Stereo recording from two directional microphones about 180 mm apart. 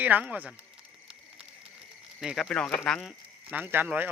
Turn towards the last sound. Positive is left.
turn(degrees=-10)  # may be behind; listen again after turning